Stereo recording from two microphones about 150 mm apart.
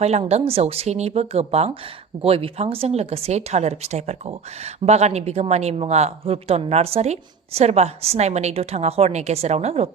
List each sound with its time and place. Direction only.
0.0 s speech: 45° right (ahead or behind)